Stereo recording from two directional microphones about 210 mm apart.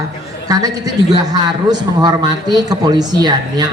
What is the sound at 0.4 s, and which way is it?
A man's voice, 15° right (ahead or behind).